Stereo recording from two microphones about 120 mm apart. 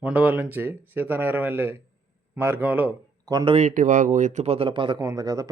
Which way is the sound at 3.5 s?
80° right.